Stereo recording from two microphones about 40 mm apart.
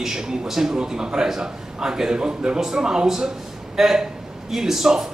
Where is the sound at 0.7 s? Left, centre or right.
Centre.